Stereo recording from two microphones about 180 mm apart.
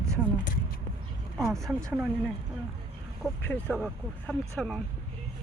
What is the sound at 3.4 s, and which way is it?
Speech, 10° left (ahead or behind).